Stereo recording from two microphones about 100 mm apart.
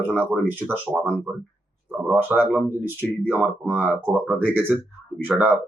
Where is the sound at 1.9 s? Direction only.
20° right (ahead or behind).